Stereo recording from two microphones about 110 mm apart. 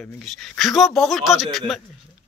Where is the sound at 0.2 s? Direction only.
Centre (ahead or behind).